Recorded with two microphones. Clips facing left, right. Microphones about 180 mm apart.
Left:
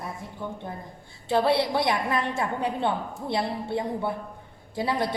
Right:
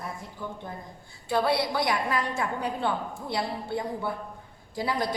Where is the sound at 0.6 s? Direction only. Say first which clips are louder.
Left 2 dB; 25° left (ahead or behind).